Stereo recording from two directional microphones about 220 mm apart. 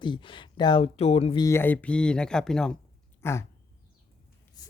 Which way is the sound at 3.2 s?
10° left (ahead or behind).